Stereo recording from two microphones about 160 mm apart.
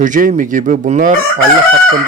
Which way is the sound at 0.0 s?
55° right (ahead or behind).